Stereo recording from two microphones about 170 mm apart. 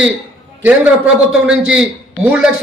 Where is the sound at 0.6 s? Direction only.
10° right (ahead or behind).